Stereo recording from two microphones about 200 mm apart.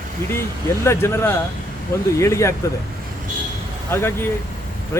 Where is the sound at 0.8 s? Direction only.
10° left (ahead or behind).